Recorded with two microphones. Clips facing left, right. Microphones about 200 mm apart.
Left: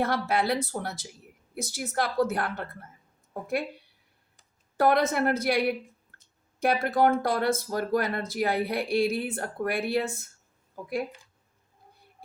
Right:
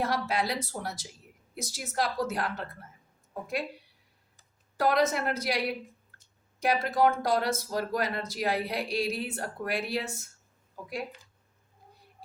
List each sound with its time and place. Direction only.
0.0 s speech: 55° left (ahead or behind)
4.8 s speech: 55° left (ahead or behind)
6.6 s speech: 55° left (ahead or behind)